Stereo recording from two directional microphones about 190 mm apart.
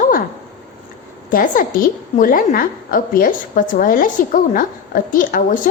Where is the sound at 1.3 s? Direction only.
50° left (ahead or behind).